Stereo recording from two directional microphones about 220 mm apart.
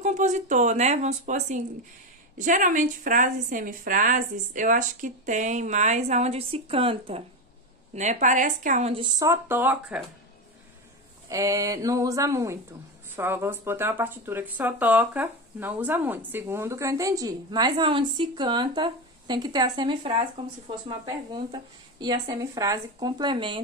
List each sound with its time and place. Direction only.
0.0 s a woman's voice: 30° right (ahead or behind); by 10.0 s 5° right (ahead or behind)
11.2 s speech: 15° right (ahead or behind)